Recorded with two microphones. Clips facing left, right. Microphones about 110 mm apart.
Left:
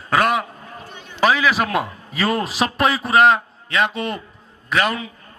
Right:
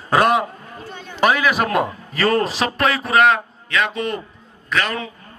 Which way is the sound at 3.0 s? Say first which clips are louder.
Left 1 dB; 30° left (ahead or behind).